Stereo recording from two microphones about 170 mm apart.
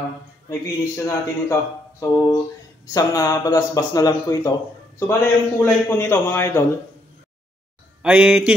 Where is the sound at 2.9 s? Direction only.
20° left (ahead or behind).